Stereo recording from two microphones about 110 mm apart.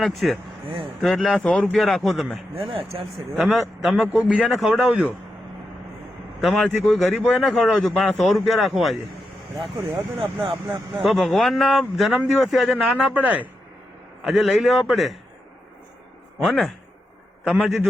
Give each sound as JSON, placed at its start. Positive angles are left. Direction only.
{"t": 0.0, "sound": "speech", "side_deg": 0}
{"t": 2.6, "sound": "speech", "side_deg": -55}
{"t": 3.3, "sound": "speech", "side_deg": -5}
{"t": 6.4, "sound": "speech", "side_deg": 0}
{"t": 10.2, "sound": "speech", "side_deg": -55}
{"t": 11.0, "sound": "speech", "side_deg": 0}
{"t": 13.1, "sound": "a man's voice", "side_deg": -15}
{"t": 14.3, "sound": "speech", "side_deg": 0}
{"t": 16.4, "sound": "speech", "side_deg": 0}